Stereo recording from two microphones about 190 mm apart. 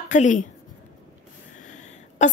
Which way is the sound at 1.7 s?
40° left (ahead or behind).